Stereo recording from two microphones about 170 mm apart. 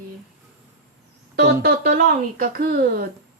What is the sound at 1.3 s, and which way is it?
Speech, 70° right (ahead or behind).